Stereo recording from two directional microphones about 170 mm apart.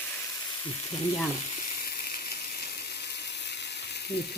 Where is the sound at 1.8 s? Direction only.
60° left (ahead or behind).